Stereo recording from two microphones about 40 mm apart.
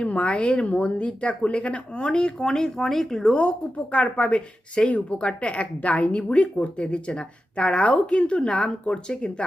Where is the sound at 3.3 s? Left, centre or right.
Left.